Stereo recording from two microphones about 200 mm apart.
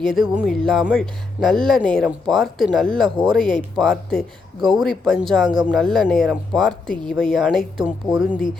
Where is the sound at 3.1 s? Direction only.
25° right (ahead or behind).